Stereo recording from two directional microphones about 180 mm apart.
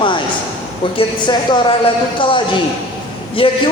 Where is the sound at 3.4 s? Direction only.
30° left (ahead or behind).